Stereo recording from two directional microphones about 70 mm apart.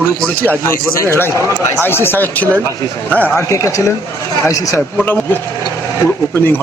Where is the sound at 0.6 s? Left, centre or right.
Left.